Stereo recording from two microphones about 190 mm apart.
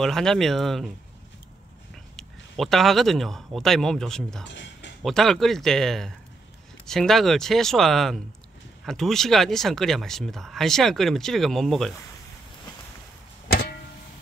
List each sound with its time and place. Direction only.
0.0 s speech: centre (ahead or behind)
2.1 s speech: centre (ahead or behind)
4.5 s a sound: 65° left (ahead or behind)
5.0 s speech: centre (ahead or behind)
13.5 s music: 55° left (ahead or behind)